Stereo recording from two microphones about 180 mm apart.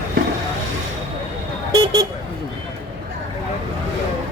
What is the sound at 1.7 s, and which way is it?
Vehicle, 20° right (ahead or behind).